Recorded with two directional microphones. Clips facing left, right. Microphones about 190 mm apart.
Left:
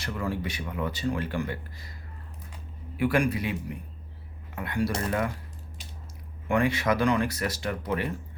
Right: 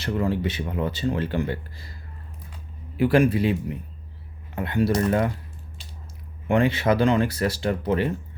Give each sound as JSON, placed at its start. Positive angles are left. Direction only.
{"t": 0.0, "sound": "speech", "side_deg": -30}
{"t": 3.0, "sound": "speech", "side_deg": -25}
{"t": 6.5, "sound": "speech", "side_deg": -25}